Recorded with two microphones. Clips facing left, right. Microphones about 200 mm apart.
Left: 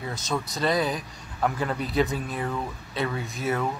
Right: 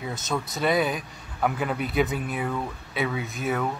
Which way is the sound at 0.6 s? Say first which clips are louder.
Right 2 dB; 5° right (ahead or behind).